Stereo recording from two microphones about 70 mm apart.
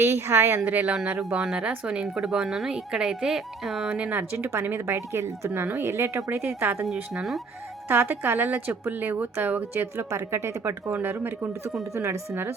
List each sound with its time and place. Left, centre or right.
0.0 s speech: right
0.6 s a woman's voice: right
1.4 s speech: centre
3.9 s a woman's voice: right
4.9 s speech: right
6.8 s speech: centre
7.9 s a woman's voice: right
9.7 s speech: right